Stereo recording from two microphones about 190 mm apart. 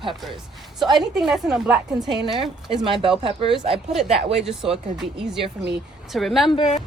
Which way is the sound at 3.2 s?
30° right (ahead or behind).